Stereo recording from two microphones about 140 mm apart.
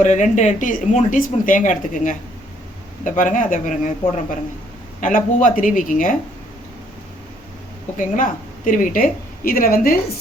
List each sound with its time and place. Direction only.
0.0 s speech: 60° left (ahead or behind)
4.9 s speech: 70° left (ahead or behind)
7.9 s a woman's voice: 70° left (ahead or behind); by 10.0 s 90° left